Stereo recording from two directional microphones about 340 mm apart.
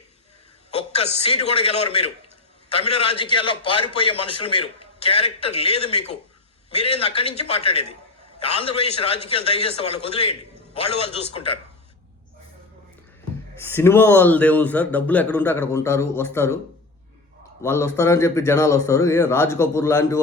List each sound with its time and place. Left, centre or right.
0.7 s a man's voice: centre
13.7 s a man's voice: centre
17.6 s a man's voice: centre